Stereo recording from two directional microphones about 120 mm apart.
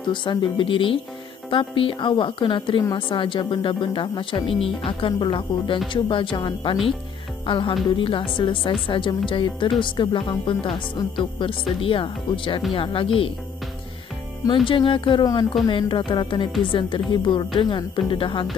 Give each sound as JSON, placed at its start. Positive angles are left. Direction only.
{"t": 0.0, "sound": "a woman's voice", "side_deg": 45}
{"t": 14.4, "sound": "speech", "side_deg": 45}